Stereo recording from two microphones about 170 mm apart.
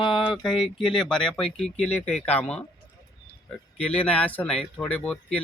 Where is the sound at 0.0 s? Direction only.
30° left (ahead or behind).